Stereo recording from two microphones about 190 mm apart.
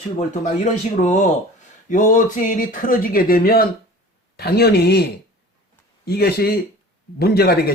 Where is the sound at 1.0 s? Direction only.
40° left (ahead or behind); by 5.0 s 60° left (ahead or behind).